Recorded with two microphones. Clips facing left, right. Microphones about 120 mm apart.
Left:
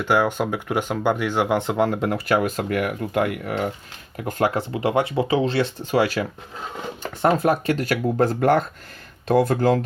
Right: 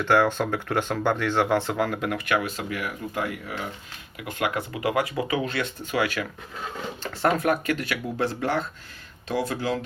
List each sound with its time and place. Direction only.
0.0 s speech: 10° left (ahead or behind); by 2.5 s 35° left (ahead or behind)
2.6 s speech: 55° left (ahead or behind)
4.2 s speech: 40° left (ahead or behind)
7.3 s speech: 30° left (ahead or behind); by 9.8 s 50° left (ahead or behind)